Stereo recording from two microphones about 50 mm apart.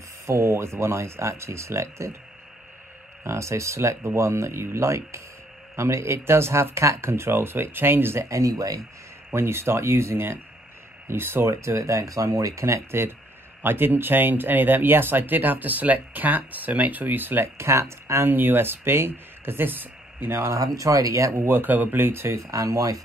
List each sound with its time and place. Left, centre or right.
0.3 s speech: right
3.3 s speech: right
8.3 s speech: right
9.3 s speech: right
11.4 s speech: right
13.6 s speech: right
17.6 s speech: right
18.3 s speech: right
20.5 s speech: right
21.5 s speech: right
22.5 s speech: right